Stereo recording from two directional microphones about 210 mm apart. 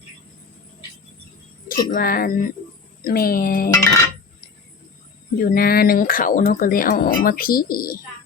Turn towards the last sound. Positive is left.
turn(degrees=45)  # may be behind; listen again after turning